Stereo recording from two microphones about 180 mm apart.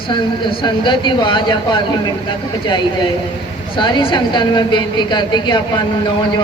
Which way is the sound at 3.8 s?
25° left (ahead or behind).